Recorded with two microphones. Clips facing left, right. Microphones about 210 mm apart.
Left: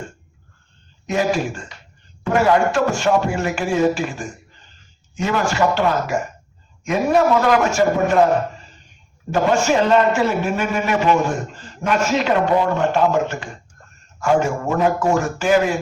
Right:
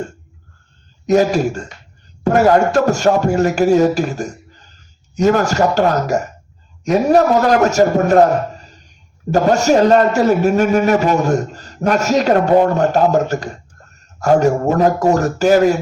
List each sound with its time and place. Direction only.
1.0 s a man's voice: 40° right (ahead or behind)